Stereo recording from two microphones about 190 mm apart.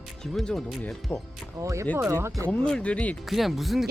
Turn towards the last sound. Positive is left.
turn(degrees=0)  # may be behind; listen again after turning